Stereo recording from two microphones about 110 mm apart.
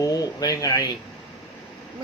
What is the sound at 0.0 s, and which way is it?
Speech, 35° left (ahead or behind).